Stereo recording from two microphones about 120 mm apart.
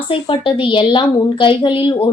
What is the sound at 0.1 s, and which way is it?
A woman's voice, 45° left (ahead or behind).